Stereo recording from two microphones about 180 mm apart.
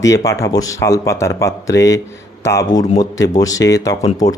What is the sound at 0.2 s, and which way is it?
Speech, 20° left (ahead or behind).